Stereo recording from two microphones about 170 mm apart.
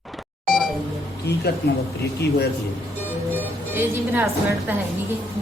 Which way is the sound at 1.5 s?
70° left (ahead or behind).